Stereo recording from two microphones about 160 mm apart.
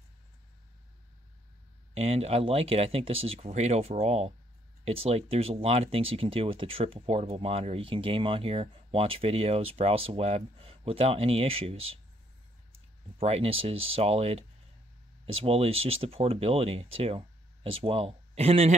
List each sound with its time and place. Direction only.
2.0 s speech: 40° right (ahead or behind)
13.2 s speech: 40° right (ahead or behind)